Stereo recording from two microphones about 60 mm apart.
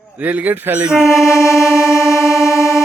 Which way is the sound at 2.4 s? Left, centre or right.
Left.